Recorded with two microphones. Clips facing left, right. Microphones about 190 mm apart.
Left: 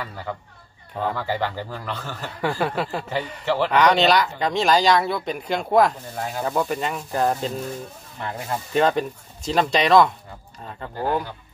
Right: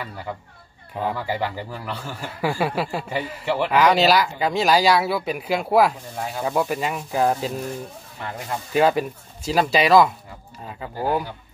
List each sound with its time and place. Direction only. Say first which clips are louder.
0.9 s speech: even; 10° right (ahead or behind)